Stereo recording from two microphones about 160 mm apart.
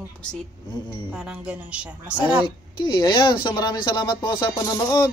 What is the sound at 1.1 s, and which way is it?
A woman's voice, 5° right (ahead or behind).